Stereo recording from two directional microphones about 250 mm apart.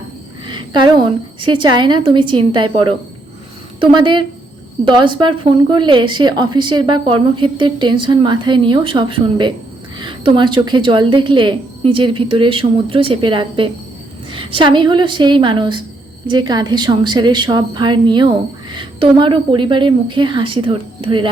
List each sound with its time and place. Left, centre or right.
0.4 s a woman's voice: centre
3.8 s a woman's voice: centre